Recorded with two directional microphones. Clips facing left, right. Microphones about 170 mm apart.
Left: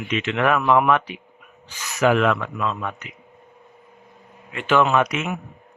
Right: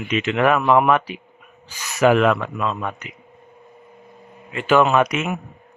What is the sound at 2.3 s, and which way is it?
Speech, 25° right (ahead or behind).